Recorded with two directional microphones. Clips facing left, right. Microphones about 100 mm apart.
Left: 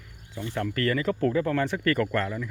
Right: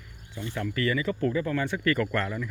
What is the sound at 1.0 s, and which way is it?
Speech, 75° left (ahead or behind).